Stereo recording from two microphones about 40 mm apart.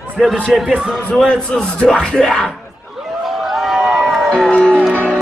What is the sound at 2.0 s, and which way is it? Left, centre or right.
Music, centre.